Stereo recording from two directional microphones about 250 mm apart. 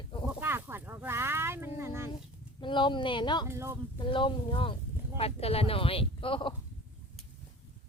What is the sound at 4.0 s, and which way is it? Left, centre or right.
Speech, centre.